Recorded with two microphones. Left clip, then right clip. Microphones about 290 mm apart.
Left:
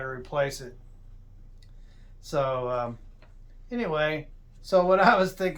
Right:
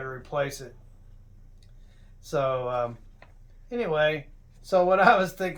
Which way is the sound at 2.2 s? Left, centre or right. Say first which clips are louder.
Right 1 dB; centre.